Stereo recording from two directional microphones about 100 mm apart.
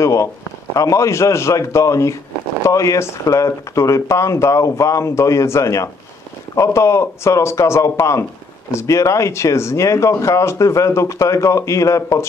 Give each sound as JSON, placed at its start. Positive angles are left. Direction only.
{"t": 0.0, "sound": "speech", "side_deg": 30}